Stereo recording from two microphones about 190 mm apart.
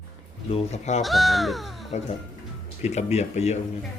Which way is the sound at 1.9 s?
35° left (ahead or behind).